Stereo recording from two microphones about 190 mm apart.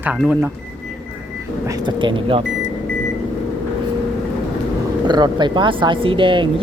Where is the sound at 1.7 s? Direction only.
25° right (ahead or behind).